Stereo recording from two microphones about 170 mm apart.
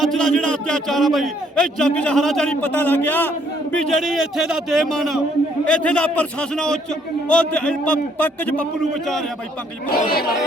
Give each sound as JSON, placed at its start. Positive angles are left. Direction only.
{"t": 0.0, "sound": "a man's voice", "side_deg": 5}
{"t": 9.9, "sound": "speech", "side_deg": 60}